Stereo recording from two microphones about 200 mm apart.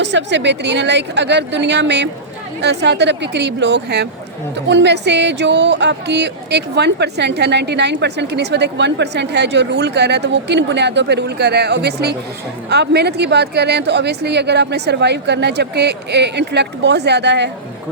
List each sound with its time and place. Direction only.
0.0 s speech: 60° right (ahead or behind)